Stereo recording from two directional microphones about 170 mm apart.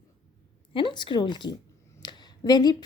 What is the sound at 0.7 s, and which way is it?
A woman's voice, 30° left (ahead or behind).